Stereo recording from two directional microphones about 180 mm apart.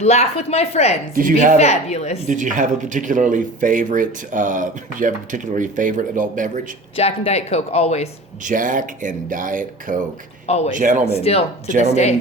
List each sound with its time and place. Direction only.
0.0 s speech: 35° left (ahead or behind)
1.1 s speech: 50° right (ahead or behind)
1.5 s speech: 35° left (ahead or behind)
2.2 s speech: 45° right (ahead or behind)
6.9 s speech: 35° left (ahead or behind)
8.4 s speech: 45° right (ahead or behind)
10.4 s speech: 35° left (ahead or behind)
10.8 s speech: 45° right (ahead or behind)
11.1 s speech: 35° left (ahead or behind)